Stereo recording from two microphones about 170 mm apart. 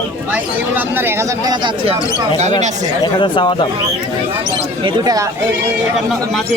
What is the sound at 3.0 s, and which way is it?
Speech, 25° left (ahead or behind).